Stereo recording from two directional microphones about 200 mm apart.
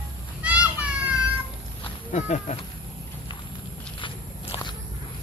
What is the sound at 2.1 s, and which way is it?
Speech, 35° left (ahead or behind).